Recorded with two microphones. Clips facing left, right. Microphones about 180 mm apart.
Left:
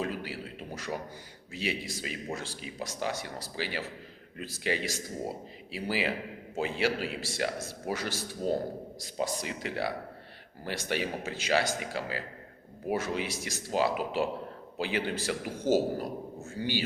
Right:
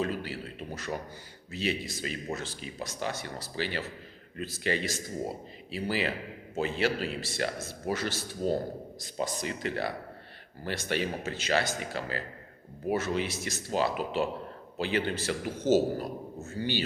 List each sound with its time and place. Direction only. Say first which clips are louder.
0.0 s a sound: right 2 dB; 10° left (ahead or behind)
1.5 s speech: right 2 dB; 10° left (ahead or behind)
16.4 s speech: right 1 dB; 15° left (ahead or behind)